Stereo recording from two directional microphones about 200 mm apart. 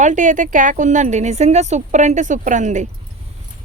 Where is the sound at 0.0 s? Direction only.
40° right (ahead or behind).